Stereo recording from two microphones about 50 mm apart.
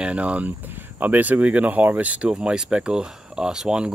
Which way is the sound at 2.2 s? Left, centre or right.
Centre.